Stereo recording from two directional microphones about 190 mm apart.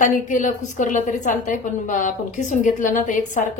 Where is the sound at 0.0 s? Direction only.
40° left (ahead or behind).